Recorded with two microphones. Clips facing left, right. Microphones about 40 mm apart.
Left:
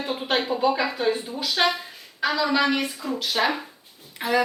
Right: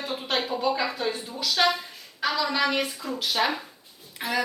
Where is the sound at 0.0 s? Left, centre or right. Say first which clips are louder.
Left 3 dB; centre.